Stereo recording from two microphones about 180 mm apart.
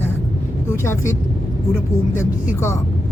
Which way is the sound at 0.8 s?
15° left (ahead or behind).